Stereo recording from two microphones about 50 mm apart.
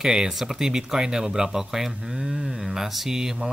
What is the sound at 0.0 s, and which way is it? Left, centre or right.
Speech, centre.